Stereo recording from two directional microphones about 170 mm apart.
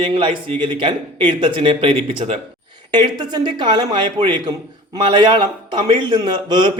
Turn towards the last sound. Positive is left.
turn(degrees=-25)  # may be behind; listen again after turning